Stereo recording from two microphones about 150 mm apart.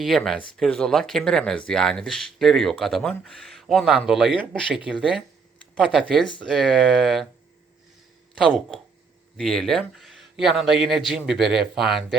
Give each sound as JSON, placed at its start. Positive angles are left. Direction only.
{"t": 0.0, "sound": "speech", "side_deg": 0}
{"t": 9.4, "sound": "speech", "side_deg": 0}